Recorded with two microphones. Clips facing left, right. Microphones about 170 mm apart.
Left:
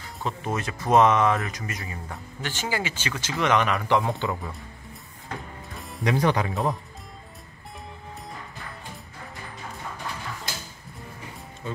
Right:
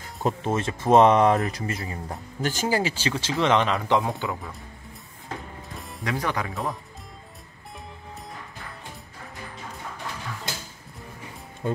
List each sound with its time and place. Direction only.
0.0 s music: 45° right (ahead or behind)
0.4 s speech: 25° right (ahead or behind)
4.1 s speech: centre (ahead or behind)
5.8 s music: centre (ahead or behind)
6.0 s speech: 20° left (ahead or behind)
6.5 s speech: centre (ahead or behind)
11.6 s speech: 50° right (ahead or behind)